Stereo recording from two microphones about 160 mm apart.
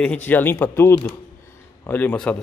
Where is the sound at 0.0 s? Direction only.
10° left (ahead or behind).